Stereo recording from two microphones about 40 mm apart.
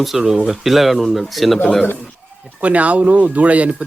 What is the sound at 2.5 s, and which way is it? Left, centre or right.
Speech, right.